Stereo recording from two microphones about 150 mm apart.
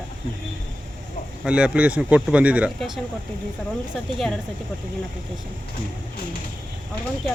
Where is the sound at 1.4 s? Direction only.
10° right (ahead or behind).